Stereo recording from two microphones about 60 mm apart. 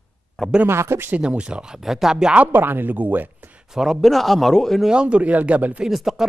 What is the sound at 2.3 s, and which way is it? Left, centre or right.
Speech, right.